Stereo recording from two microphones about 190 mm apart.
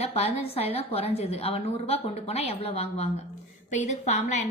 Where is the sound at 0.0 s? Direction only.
30° left (ahead or behind).